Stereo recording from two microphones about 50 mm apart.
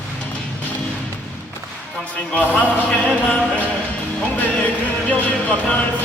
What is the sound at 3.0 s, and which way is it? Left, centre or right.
Music, left.